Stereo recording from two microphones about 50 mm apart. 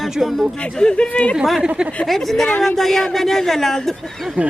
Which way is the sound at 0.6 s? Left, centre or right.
Centre.